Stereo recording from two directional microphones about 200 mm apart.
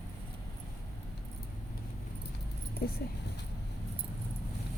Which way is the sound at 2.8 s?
50° left (ahead or behind).